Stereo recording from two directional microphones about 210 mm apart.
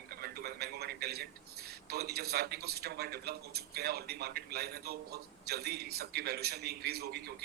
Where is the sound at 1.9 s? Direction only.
50° right (ahead or behind).